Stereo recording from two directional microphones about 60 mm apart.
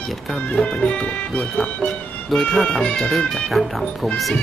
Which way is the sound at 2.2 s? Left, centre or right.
Centre.